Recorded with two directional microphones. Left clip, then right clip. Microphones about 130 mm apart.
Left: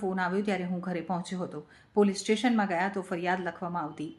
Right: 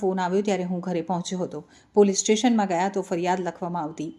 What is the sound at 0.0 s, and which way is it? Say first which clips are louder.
A woman's voice: right 6 dB; 30° right (ahead or behind).